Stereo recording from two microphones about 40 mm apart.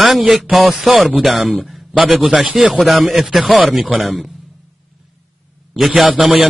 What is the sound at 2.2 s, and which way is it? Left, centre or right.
Speech, right.